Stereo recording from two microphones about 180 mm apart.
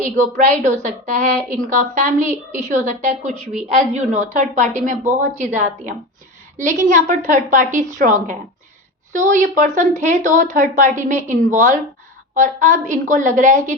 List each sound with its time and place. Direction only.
0.0 s a woman's voice: 45° right (ahead or behind)